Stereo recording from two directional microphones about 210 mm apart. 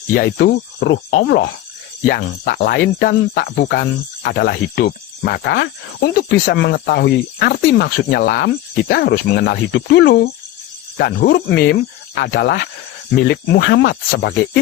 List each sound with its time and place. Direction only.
0.3 s speech: 55° left (ahead or behind)
2.0 s speech: 45° left (ahead or behind)